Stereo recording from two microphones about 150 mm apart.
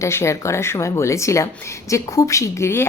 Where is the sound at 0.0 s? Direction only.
20° left (ahead or behind).